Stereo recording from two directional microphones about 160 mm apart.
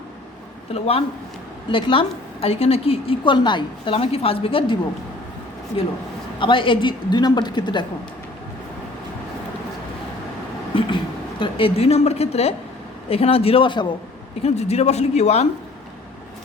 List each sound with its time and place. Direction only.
0.7 s a woman's voice: 35° left (ahead or behind)
6.4 s a woman's voice: 30° left (ahead or behind)
10.8 s a woman's voice: 30° left (ahead or behind)
14.4 s speech: 40° left (ahead or behind)